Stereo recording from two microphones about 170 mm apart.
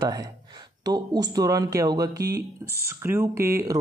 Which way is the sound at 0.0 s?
20° right (ahead or behind).